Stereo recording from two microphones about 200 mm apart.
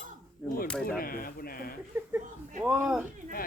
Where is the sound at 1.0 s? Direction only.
45° left (ahead or behind).